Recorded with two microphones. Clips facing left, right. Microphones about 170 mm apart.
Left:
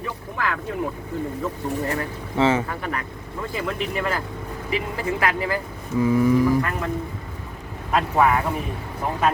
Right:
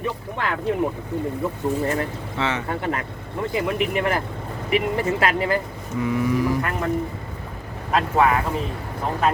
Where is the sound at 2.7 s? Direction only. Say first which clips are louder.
Right 3 dB; 25° right (ahead or behind).